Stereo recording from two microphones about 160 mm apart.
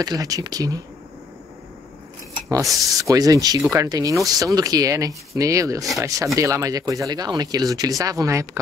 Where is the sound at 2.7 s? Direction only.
20° right (ahead or behind).